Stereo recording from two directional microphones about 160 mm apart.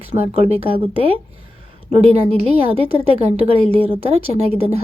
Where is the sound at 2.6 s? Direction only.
35° right (ahead or behind).